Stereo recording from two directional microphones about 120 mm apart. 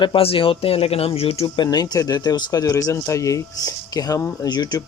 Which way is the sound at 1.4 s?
40° left (ahead or behind).